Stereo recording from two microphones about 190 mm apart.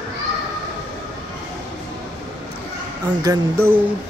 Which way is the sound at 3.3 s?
20° right (ahead or behind).